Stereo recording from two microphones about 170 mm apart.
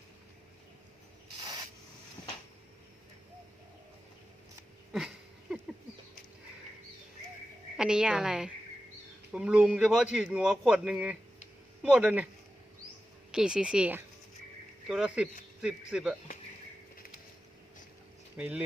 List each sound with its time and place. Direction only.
1.4 s rub: 25° right (ahead or behind)
4.9 s a sound: 5° right (ahead or behind)
7.8 s a man's voice: 5° right (ahead or behind)
13.3 s a man's voice: 5° right (ahead or behind)
18.3 s speech: 5° right (ahead or behind)